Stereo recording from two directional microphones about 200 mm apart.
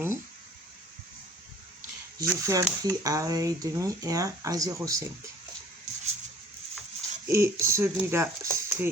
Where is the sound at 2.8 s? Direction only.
15° right (ahead or behind).